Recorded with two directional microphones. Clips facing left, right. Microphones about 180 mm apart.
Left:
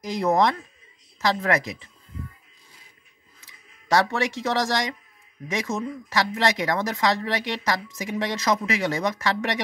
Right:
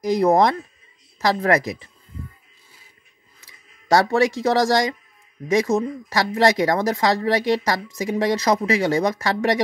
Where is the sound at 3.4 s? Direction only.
35° right (ahead or behind).